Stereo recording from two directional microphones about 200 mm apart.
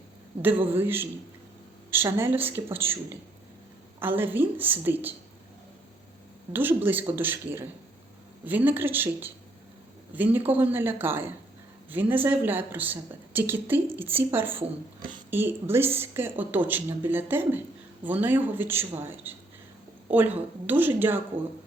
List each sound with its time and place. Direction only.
0.4 s a woman's voice: 10° right (ahead or behind)
4.0 s a woman's voice: 10° right (ahead or behind)
6.5 s a woman's voice: 10° right (ahead or behind)